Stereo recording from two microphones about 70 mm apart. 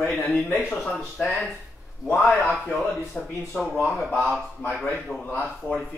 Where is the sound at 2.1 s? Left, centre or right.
Centre.